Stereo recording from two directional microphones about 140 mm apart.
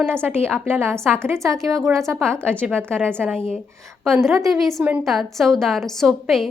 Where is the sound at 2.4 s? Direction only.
10° left (ahead or behind).